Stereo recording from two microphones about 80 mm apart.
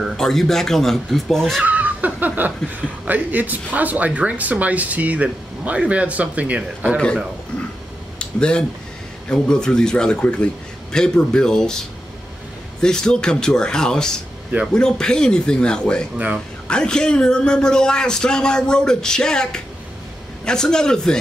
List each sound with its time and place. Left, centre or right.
0.2 s speech: centre
1.6 s speech: centre
8.2 s a sound: centre
9.3 s a man's voice: centre
12.8 s a man's voice: centre